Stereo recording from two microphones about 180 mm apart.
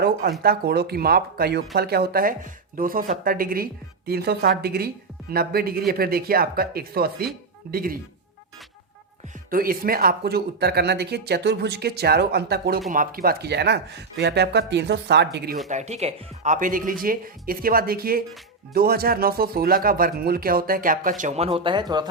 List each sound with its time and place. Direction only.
0.0 s speech: 60° right (ahead or behind)
9.5 s speech: 55° right (ahead or behind)
12.9 s speech: 50° right (ahead or behind); by 15.5 s 70° right (ahead or behind)
15.7 s speech: 40° right (ahead or behind); by 22.1 s 25° right (ahead or behind)